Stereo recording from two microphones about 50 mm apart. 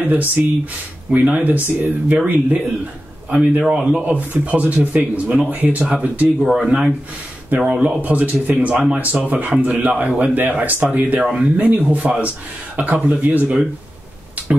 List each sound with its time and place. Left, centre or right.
0.0 s speech: right
3.6 s a man's voice: centre; by 5.9 s right
6.4 s speech: centre
7.6 s a man's voice: right
8.0 s a man's voice: right